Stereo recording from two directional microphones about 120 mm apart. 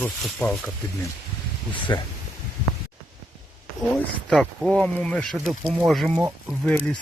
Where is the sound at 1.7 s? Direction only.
40° left (ahead or behind).